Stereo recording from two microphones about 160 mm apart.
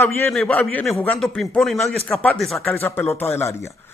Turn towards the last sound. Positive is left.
turn(degrees=15)  # may be behind; listen again after turning